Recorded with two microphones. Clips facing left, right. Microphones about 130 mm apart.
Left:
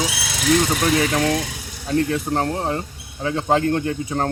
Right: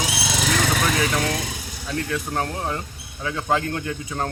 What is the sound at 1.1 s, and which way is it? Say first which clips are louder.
Speech: left 4 dB; 35° left (ahead or behind).